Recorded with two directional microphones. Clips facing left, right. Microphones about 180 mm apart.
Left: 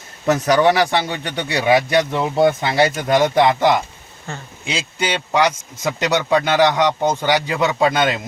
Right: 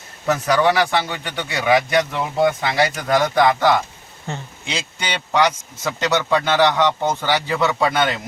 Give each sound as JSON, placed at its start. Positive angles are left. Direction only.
{"t": 0.3, "sound": "speech", "side_deg": 35}
{"t": 4.3, "sound": "speech", "side_deg": -20}
{"t": 4.6, "sound": "speech", "side_deg": 5}